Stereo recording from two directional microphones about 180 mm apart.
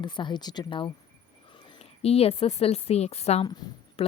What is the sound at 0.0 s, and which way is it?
A woman's voice, 25° left (ahead or behind).